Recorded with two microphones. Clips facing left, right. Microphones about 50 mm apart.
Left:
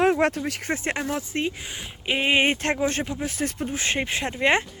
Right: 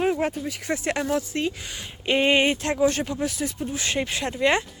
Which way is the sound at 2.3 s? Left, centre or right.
Left.